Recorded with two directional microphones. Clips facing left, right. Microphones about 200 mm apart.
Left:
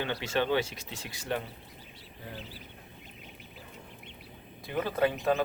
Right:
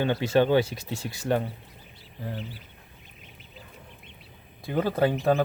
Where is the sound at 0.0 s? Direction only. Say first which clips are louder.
Right 8 dB; 40° right (ahead or behind).